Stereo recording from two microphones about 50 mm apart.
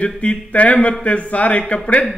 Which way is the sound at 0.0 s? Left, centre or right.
Left.